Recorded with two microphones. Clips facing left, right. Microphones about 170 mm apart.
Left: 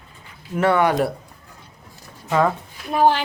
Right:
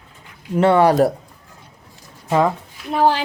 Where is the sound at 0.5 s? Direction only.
30° right (ahead or behind).